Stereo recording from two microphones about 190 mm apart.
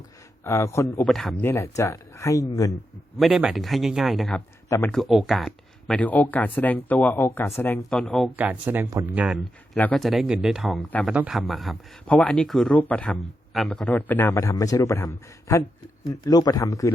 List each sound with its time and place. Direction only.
0.4 s speech: 15° left (ahead or behind)
1.0 s speech: centre (ahead or behind); by 2.7 s 20° left (ahead or behind)
3.2 s a man's voice: centre (ahead or behind)
8.6 s speech: 10° right (ahead or behind)
9.7 s a man's voice: 5° left (ahead or behind)